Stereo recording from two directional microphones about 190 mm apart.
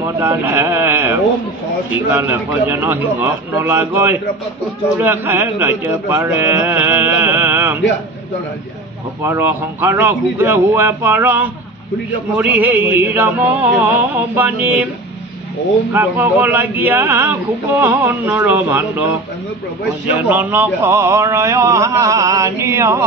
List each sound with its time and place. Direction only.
0.0 s speech: 15° right (ahead or behind)
9.2 s speech: 10° right (ahead or behind)
15.9 s speech: 10° right (ahead or behind)
20.1 s speech: 10° right (ahead or behind)